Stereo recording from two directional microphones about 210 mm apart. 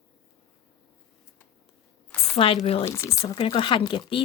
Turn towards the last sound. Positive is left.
turn(degrees=25)  # may be behind; listen again after turning